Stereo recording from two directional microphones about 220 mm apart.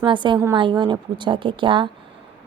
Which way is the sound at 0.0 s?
20° right (ahead or behind).